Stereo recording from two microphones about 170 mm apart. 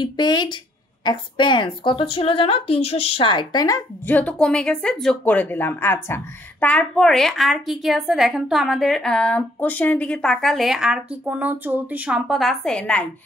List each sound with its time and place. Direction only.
0.0 s a woman's voice: 25° left (ahead or behind)
4.1 s a woman's voice: 10° left (ahead or behind)